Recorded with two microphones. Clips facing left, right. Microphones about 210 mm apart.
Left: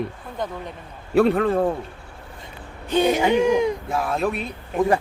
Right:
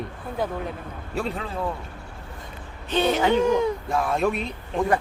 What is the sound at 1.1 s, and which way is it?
Speech, 60° left (ahead or behind).